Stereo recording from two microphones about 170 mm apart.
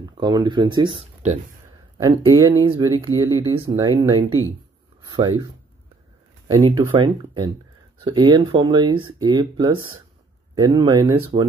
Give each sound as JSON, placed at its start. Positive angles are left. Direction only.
{"t": 0.2, "sound": "speech", "side_deg": -25}
{"t": 3.5, "sound": "speech", "side_deg": -30}
{"t": 5.0, "sound": "speech", "side_deg": -20}
{"t": 6.4, "sound": "speech", "side_deg": -25}